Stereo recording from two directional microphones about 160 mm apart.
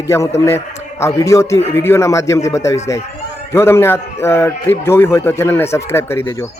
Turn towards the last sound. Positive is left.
turn(degrees=15)  # may be behind; listen again after turning